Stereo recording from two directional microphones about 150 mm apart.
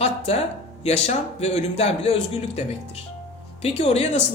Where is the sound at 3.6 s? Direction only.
45° left (ahead or behind).